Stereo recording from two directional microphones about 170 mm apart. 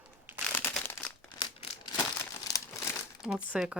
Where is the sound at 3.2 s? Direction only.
5° right (ahead or behind).